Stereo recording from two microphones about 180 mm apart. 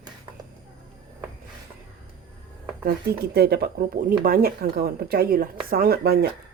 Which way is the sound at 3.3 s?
65° right (ahead or behind).